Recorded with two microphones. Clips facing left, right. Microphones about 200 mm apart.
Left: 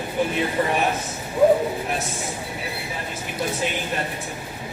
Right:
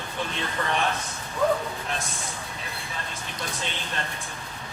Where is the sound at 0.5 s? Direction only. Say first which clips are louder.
Left 3 dB; 15° left (ahead or behind).